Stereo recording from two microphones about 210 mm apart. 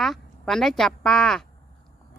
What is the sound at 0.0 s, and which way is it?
Speech, centre (ahead or behind).